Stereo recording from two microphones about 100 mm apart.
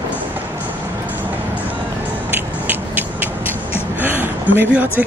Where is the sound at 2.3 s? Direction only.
20° right (ahead or behind).